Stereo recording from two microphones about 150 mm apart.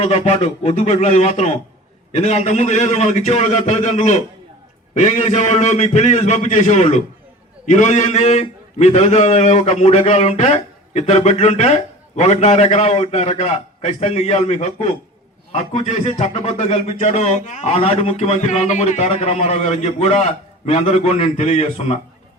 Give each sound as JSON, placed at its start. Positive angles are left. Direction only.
{"t": 0.0, "sound": "a man's voice", "side_deg": 45}